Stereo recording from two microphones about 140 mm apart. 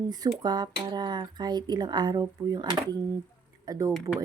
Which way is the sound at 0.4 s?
30° right (ahead or behind).